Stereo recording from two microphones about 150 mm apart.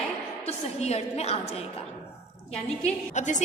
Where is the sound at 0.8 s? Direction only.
45° left (ahead or behind).